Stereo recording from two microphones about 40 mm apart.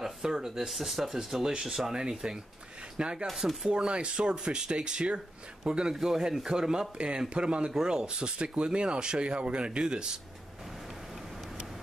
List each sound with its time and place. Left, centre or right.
0.2 s speech: centre
3.3 s speech: centre
3.6 s speech: right
5.9 s speech: centre